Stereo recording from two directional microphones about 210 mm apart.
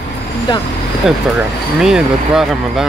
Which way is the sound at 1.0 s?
5° right (ahead or behind).